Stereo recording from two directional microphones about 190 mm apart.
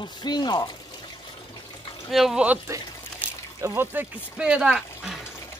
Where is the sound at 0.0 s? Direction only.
20° left (ahead or behind).